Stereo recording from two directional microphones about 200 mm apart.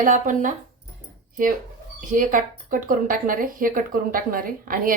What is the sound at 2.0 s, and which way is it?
A woman's voice, 40° right (ahead or behind).